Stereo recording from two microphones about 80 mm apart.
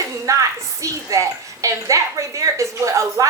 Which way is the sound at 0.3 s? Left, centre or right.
Right.